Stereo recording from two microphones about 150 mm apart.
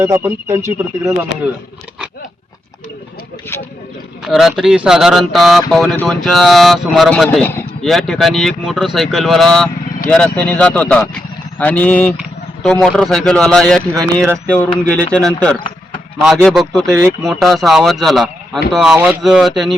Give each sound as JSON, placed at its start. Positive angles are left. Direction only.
{"t": 0.0, "sound": "speech", "side_deg": -15}
{"t": 4.3, "sound": "speech", "side_deg": 0}
{"t": 7.3, "sound": "speech", "side_deg": 10}
{"t": 15.5, "sound": "a sound", "side_deg": 35}
{"t": 16.2, "sound": "speech", "side_deg": 0}
{"t": 18.9, "sound": "speech", "side_deg": -15}
{"t": 19.2, "sound": "speech", "side_deg": 0}